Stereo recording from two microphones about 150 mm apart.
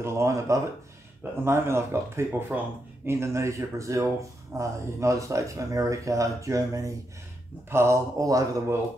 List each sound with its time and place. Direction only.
0.0 s speech: 20° right (ahead or behind)